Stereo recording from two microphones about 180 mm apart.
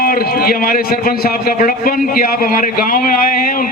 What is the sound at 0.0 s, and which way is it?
A man's voice, 55° left (ahead or behind).